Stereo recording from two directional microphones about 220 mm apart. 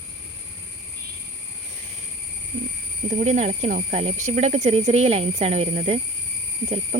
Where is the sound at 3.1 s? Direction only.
35° right (ahead or behind).